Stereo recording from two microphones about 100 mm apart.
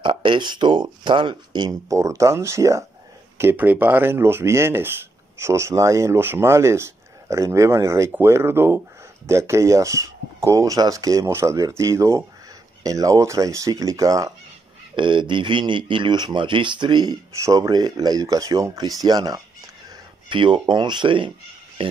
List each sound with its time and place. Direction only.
0.0 s speech: 55° right (ahead or behind); by 14.3 s 35° right (ahead or behind)
15.0 s speech: 55° right (ahead or behind)
17.4 s speech: 35° right (ahead or behind)
20.2 s speech: 55° right (ahead or behind)